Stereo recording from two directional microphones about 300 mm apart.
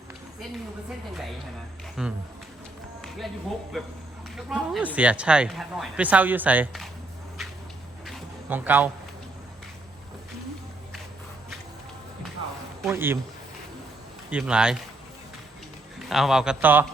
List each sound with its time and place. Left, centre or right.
2.0 s speech: centre
3.7 s speech: centre
8.0 s a sound: centre
12.8 s speech: centre
14.3 s speech: centre
16.0 s speech: centre